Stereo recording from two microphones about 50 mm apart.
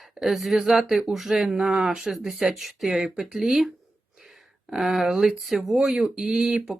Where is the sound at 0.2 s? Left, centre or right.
Centre.